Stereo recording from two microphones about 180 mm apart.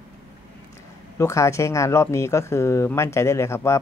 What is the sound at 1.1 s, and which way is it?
Speech, 15° left (ahead or behind).